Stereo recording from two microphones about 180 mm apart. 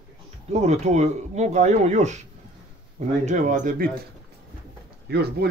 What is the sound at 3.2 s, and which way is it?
Speech, 40° right (ahead or behind).